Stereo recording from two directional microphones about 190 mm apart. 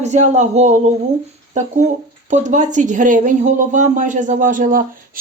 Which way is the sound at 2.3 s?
40° right (ahead or behind).